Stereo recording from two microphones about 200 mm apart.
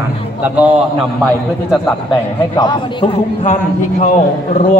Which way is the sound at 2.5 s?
20° left (ahead or behind).